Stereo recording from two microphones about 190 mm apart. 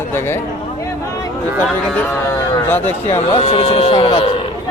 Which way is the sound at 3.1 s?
30° left (ahead or behind).